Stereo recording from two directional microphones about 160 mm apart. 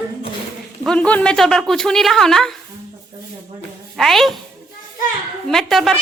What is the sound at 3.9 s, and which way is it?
Speech, centre (ahead or behind).